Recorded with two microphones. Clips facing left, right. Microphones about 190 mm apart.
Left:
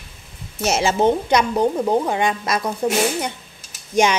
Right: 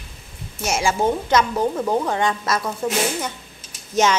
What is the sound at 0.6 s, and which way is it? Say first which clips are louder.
A woman's voice: left 3 dB; 25° left (ahead or behind).